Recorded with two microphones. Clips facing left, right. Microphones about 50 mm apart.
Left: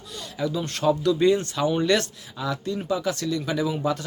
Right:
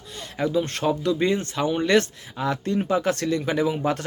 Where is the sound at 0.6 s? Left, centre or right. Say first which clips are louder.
Left 1 dB; right.